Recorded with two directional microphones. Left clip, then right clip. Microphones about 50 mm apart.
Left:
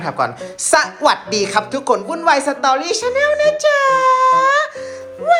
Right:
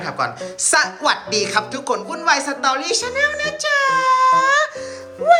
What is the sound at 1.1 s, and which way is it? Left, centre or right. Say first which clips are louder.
A woman's voice: left 3 dB; right.